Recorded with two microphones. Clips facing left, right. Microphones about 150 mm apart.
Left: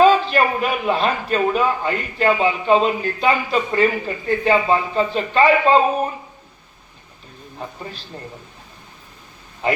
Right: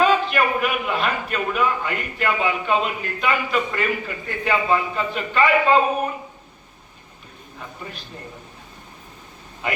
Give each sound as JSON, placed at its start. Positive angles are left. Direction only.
{"t": 0.0, "sound": "a man's voice", "side_deg": 30}
{"t": 7.6, "sound": "a man's voice", "side_deg": 30}
{"t": 9.6, "sound": "a man's voice", "side_deg": 30}